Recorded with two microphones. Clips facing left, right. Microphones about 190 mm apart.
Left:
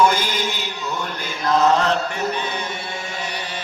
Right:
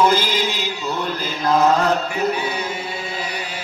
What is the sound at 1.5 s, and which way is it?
Chant, 10° right (ahead or behind).